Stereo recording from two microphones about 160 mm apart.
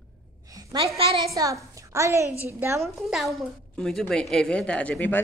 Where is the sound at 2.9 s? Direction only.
Centre (ahead or behind).